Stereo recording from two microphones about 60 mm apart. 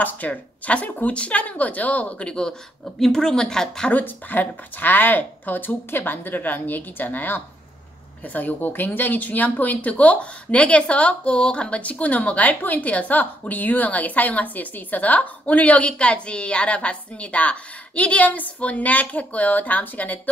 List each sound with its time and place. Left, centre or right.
0.0 s a woman's voice: left
3.9 s speech: left